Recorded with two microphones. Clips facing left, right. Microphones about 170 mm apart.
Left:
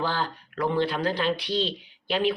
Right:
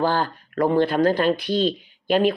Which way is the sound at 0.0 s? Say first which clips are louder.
Right 6 dB; 50° right (ahead or behind).